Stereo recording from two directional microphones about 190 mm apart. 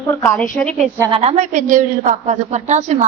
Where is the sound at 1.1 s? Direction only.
35° right (ahead or behind).